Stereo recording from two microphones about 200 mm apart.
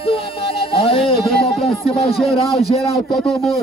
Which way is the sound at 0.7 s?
25° left (ahead or behind).